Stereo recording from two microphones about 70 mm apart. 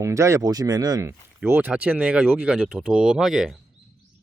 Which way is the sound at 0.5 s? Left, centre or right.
Right.